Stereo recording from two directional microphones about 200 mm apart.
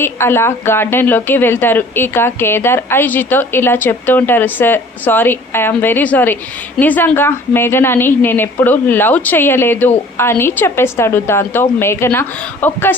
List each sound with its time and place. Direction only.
0.0 s a woman's voice: 10° left (ahead or behind)